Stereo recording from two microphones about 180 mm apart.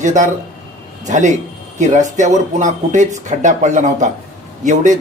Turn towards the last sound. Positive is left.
turn(degrees=-45)  # may be behind; listen again after turning